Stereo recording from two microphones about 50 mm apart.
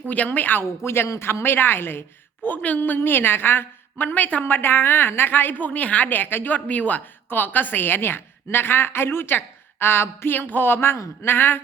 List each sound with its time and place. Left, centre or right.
0.1 s a woman's voice: left
0.9 s speech: left
1.2 s a woman's voice: left
2.6 s a woman's voice: left
10.3 s a woman's voice: left